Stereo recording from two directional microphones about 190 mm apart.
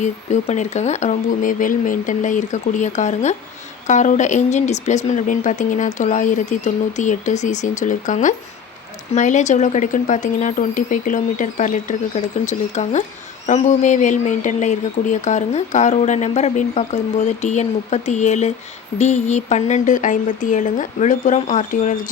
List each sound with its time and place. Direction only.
0.0 s speech: 40° left (ahead or behind)